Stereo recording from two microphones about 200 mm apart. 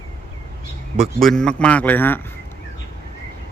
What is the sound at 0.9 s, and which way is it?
A man's voice, centre (ahead or behind).